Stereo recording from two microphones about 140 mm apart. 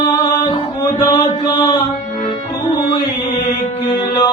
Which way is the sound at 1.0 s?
30° left (ahead or behind).